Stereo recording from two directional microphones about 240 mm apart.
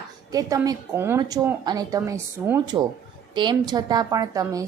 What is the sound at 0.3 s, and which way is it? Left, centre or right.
A woman's voice, centre.